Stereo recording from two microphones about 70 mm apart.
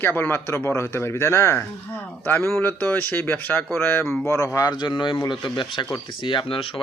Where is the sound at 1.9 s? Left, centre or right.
Left.